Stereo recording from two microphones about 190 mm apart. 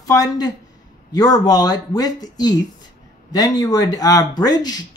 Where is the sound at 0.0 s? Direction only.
20° left (ahead or behind).